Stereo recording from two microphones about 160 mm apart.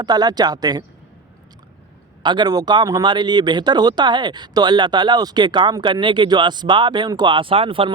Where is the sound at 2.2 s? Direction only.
25° right (ahead or behind).